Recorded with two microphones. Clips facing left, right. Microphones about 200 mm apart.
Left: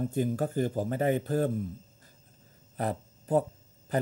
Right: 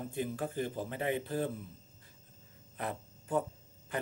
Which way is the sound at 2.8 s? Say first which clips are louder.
Left 7 dB; 35° left (ahead or behind).